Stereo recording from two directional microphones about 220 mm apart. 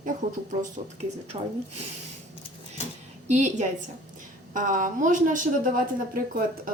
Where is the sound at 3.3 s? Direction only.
30° right (ahead or behind).